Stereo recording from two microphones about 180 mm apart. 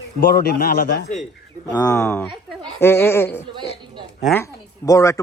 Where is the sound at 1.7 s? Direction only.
15° left (ahead or behind).